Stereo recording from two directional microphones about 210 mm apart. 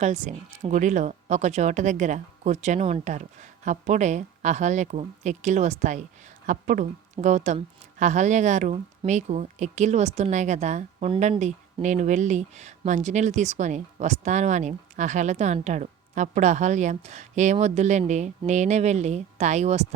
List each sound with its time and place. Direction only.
0.0 s speech: 35° right (ahead or behind)